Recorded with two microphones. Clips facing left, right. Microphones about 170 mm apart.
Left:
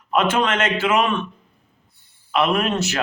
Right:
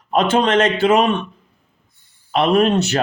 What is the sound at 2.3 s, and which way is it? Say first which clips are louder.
Speech: right 5 dB; 35° right (ahead or behind).